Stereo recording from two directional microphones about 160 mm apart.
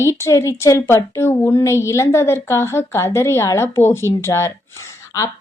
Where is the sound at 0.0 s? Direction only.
20° left (ahead or behind).